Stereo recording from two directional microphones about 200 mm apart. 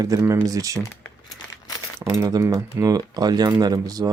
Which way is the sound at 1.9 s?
15° right (ahead or behind).